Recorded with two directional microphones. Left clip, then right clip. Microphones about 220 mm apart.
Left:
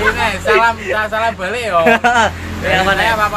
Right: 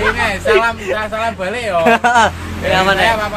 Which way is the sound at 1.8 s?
15° right (ahead or behind).